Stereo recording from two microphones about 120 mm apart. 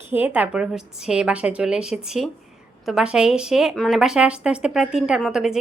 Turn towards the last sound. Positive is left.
turn(degrees=-5)  # may be behind; listen again after turning